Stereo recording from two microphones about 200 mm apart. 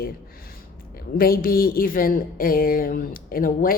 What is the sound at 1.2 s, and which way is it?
A woman's voice, 45° left (ahead or behind).